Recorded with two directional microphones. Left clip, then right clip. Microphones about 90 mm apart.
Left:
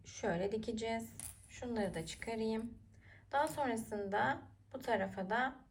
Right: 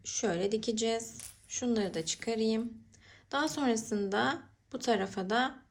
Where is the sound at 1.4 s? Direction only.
30° right (ahead or behind).